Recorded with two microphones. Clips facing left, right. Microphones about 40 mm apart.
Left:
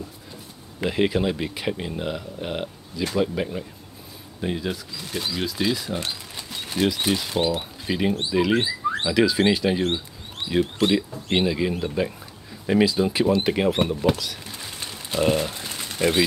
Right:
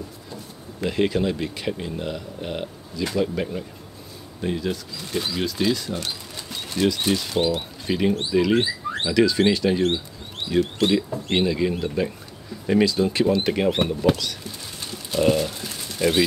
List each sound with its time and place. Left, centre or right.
0.8 s speech: centre
5.1 s speech: centre
14.1 s speech: centre